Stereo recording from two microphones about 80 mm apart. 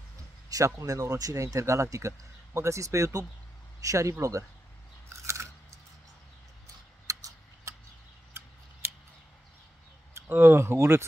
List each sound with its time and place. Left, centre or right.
0.5 s speech: right
5.2 s chewing: right
7.1 s a sound: right
8.3 s scissors: right
10.2 s speech: right